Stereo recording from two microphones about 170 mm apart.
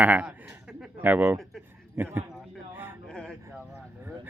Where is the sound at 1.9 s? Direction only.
10° right (ahead or behind).